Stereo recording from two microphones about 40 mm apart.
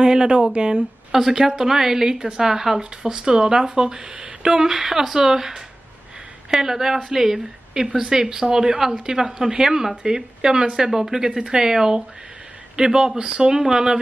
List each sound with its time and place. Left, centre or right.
0.0 s speech: centre
1.1 s speech: centre